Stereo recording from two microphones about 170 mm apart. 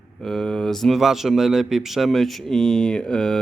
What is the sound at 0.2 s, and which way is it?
Speech, 5° left (ahead or behind).